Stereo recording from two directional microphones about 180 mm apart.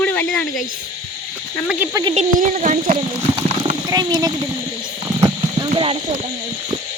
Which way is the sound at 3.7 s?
25° right (ahead or behind).